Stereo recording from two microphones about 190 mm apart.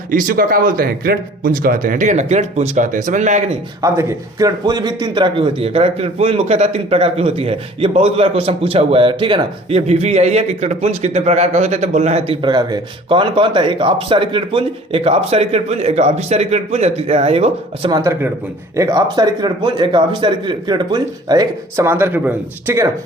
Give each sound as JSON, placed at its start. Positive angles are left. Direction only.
{"t": 0.1, "sound": "speech", "side_deg": -45}
{"t": 3.8, "sound": "a man's voice", "side_deg": -15}
{"t": 17.9, "sound": "speech", "side_deg": -15}